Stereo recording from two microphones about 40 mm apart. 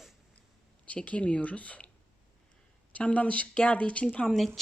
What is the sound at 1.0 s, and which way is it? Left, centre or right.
Speech, left.